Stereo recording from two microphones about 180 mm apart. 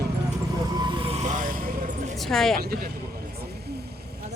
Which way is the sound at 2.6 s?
60° right (ahead or behind).